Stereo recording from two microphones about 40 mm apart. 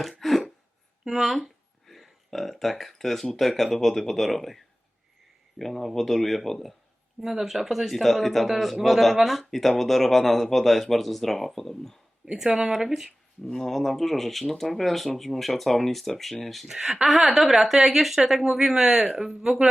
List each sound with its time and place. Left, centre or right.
0.0 s a sound: centre
1.0 s speech: centre
12.2 s speech: centre
13.4 s speech: centre
16.7 s speech: centre
17.1 s speech: centre